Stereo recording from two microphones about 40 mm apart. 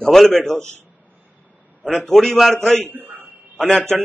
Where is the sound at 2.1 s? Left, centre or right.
Centre.